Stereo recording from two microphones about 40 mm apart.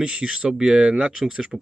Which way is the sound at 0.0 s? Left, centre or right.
Right.